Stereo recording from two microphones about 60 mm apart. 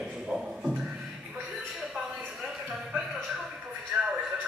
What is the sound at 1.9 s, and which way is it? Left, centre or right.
Music, centre.